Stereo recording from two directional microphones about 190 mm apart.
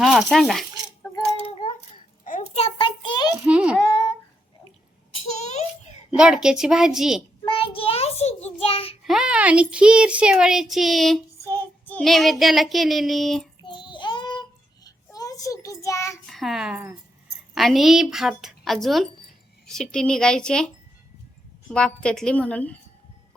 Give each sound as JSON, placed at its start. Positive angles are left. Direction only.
{"t": 0.0, "sound": "cutlery", "side_deg": 0}
{"t": 2.2, "sound": "a sound", "side_deg": 40}
{"t": 3.3, "sound": "a sound", "side_deg": -5}
{"t": 5.4, "sound": "a sound", "side_deg": 35}
{"t": 6.1, "sound": "speech", "side_deg": -5}
{"t": 7.5, "sound": "child singing", "side_deg": 30}
{"t": 9.0, "sound": "speech", "side_deg": -5}
{"t": 11.4, "sound": "child singing", "side_deg": 10}
{"t": 13.6, "sound": "child singing", "side_deg": 25}
{"t": 16.2, "sound": "a sound", "side_deg": 0}
{"t": 17.5, "sound": "speech", "side_deg": 0}
{"t": 21.7, "sound": "speech", "side_deg": 5}